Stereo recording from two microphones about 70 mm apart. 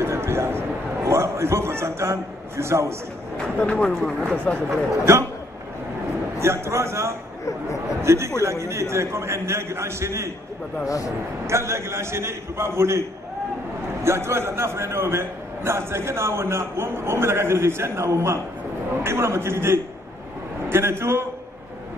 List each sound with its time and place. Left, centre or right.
0.0 s a sound: right
3.5 s speech: centre
4.6 s a man's voice: right
6.4 s a man's voice: right
11.4 s a man's voice: right
14.0 s a man's voice: right